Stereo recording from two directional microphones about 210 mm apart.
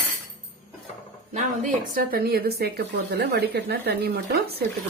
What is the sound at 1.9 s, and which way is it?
A woman's voice, 45° right (ahead or behind).